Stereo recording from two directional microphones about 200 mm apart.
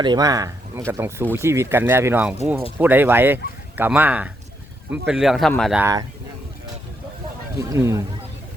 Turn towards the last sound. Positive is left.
turn(degrees=-15)  # may be behind; listen again after turning